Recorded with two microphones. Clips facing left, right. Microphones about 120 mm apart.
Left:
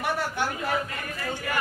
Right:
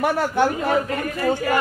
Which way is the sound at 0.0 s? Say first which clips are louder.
Right 9 dB; 45° right (ahead or behind).